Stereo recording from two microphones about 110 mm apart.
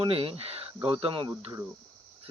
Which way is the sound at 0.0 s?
60° right (ahead or behind).